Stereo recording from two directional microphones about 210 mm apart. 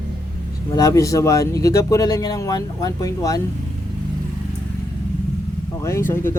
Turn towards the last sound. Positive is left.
turn(degrees=10)  # may be behind; listen again after turning